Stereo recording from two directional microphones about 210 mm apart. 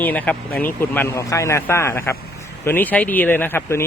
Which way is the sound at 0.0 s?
10° left (ahead or behind).